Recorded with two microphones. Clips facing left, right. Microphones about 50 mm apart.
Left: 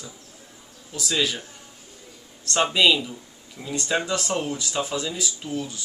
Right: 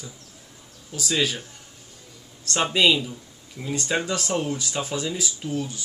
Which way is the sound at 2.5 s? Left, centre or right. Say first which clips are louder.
Left 1 dB; centre.